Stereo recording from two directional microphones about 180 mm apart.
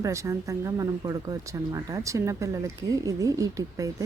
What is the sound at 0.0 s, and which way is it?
A woman's voice, 15° right (ahead or behind).